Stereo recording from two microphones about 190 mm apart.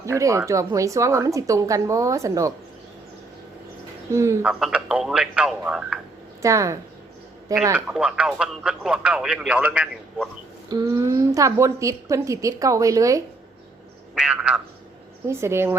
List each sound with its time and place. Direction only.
0.0 s a woman's voice: 15° right (ahead or behind)
4.1 s a woman's voice: 15° right (ahead or behind)
4.6 s speech: 5° right (ahead or behind)
6.4 s a woman's voice: 15° right (ahead or behind)
10.7 s a woman's voice: 20° right (ahead or behind)
14.2 s a woman's voice: 5° right (ahead or behind)